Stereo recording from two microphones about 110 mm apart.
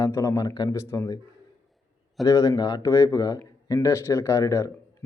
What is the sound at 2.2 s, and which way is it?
Speech, 30° left (ahead or behind).